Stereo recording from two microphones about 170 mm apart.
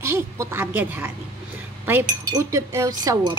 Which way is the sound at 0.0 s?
15° right (ahead or behind).